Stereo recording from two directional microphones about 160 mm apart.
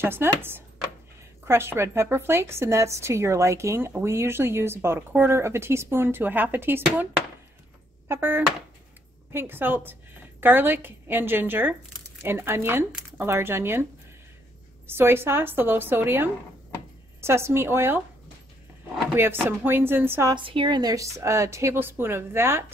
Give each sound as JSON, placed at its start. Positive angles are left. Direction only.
{"t": 0.0, "sound": "a woman's voice", "side_deg": -15}
{"t": 8.1, "sound": "a woman's voice", "side_deg": -15}
{"t": 14.9, "sound": "a woman's voice", "side_deg": -15}
{"t": 19.1, "sound": "a woman's voice", "side_deg": -15}
{"t": 20.3, "sound": "a woman's voice", "side_deg": -30}